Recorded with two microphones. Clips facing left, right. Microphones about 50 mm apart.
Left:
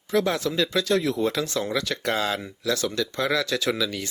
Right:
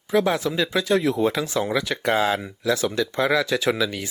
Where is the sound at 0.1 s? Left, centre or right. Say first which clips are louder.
Right 3 dB; centre.